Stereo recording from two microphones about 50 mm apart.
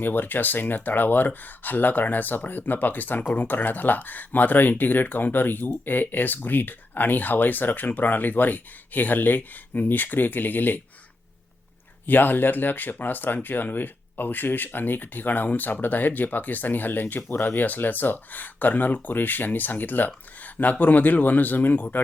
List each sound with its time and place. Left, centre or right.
0.0 s speech: left
12.0 s speech: left